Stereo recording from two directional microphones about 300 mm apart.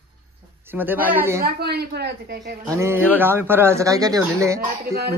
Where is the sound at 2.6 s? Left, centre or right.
Centre.